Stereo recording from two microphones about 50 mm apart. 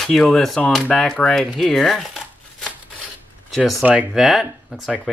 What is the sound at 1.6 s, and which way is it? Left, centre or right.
Speech, centre.